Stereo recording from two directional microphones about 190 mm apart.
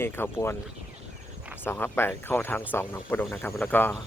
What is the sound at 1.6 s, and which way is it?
Speech, 10° left (ahead or behind).